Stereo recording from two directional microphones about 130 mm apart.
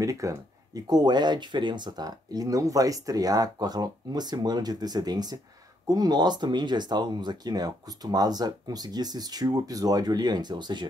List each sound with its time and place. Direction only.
0.0 s speech: 25° right (ahead or behind)